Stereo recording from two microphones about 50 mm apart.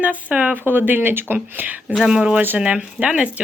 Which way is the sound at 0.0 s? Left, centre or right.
Right.